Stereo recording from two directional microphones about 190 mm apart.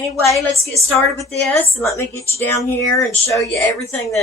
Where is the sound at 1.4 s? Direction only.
10° left (ahead or behind).